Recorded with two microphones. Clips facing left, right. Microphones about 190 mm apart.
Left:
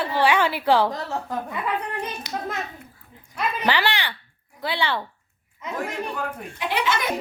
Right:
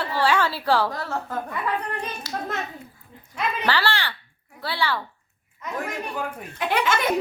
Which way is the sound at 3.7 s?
15° left (ahead or behind).